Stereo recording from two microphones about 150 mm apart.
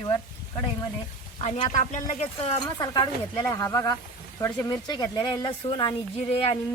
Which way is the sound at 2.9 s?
30° left (ahead or behind).